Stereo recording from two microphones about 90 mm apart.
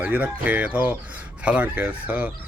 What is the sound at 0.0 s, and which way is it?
Speech, 15° right (ahead or behind).